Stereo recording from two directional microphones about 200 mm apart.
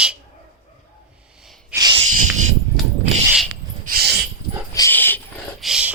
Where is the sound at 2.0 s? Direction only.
40° right (ahead or behind).